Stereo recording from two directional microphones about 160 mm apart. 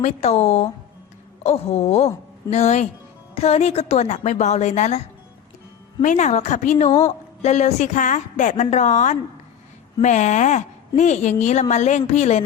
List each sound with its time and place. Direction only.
0.0 s a woman's voice: 40° left (ahead or behind)